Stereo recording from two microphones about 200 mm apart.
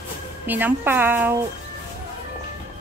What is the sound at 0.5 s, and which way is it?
Speech, 10° right (ahead or behind).